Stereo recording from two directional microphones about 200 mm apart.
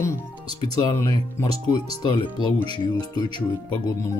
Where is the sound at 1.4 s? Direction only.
10° left (ahead or behind).